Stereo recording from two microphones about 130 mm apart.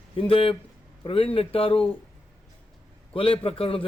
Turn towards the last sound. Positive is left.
turn(degrees=45)  # may be behind; listen again after turning